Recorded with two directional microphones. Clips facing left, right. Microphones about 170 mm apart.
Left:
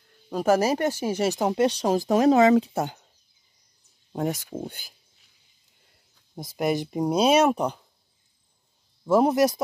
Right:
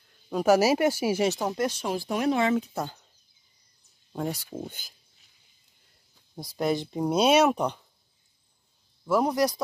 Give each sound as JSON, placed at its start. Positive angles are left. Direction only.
{"t": 0.3, "sound": "speech", "side_deg": 0}
{"t": 1.3, "sound": "speech", "side_deg": 25}
{"t": 1.8, "sound": "speech", "side_deg": 40}
{"t": 2.5, "sound": "speech", "side_deg": 30}
{"t": 6.3, "sound": "speech", "side_deg": 20}
{"t": 7.2, "sound": "speech", "side_deg": 0}
{"t": 9.0, "sound": "speech", "side_deg": 25}